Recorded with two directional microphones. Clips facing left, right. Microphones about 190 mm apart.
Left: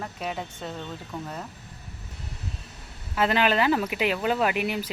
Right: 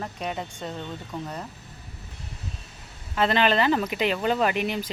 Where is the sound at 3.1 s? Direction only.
10° left (ahead or behind).